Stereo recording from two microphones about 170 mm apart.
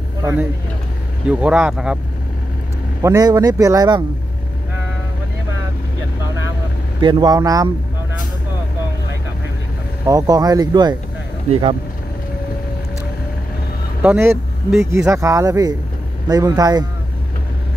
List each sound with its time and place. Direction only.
0.2 s speech: 15° right (ahead or behind)
3.0 s speech: 20° right (ahead or behind)
7.0 s speech: 25° right (ahead or behind)
10.0 s speech: 20° right (ahead or behind)
14.0 s speech: 15° right (ahead or behind)